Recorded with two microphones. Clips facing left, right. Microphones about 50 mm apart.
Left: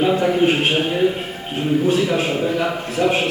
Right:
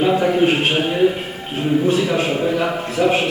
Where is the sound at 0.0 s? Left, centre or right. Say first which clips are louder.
Right 1 dB; centre.